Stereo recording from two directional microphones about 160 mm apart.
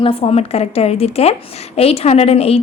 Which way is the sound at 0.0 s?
35° left (ahead or behind).